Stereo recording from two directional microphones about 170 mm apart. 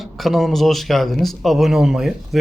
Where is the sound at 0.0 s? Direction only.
Centre (ahead or behind).